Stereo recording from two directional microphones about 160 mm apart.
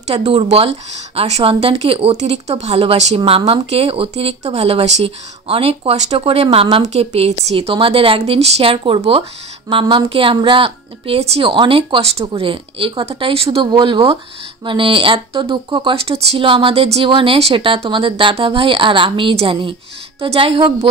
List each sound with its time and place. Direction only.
0.0 s speech: 40° right (ahead or behind)